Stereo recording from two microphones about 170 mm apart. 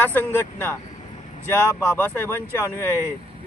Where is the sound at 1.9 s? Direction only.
10° left (ahead or behind).